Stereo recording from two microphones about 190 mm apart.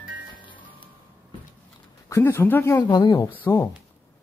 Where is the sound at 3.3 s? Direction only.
10° left (ahead or behind).